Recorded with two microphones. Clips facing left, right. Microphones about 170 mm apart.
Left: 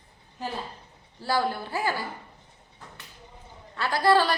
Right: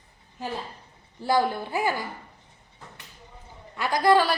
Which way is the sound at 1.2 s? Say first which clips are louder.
Right 3 dB; 20° right (ahead or behind).